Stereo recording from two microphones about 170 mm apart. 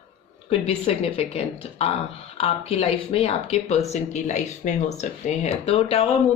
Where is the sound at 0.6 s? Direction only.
35° left (ahead or behind).